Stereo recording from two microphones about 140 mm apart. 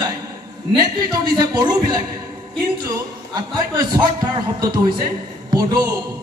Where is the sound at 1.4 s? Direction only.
30° right (ahead or behind).